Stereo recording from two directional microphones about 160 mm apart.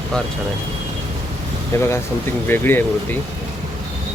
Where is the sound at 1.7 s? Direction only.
20° left (ahead or behind).